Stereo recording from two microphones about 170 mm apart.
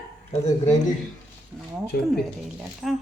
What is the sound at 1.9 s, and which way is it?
Speech, 70° left (ahead or behind).